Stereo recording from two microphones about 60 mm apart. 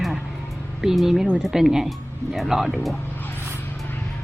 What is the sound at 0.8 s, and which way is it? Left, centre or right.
Speech, centre.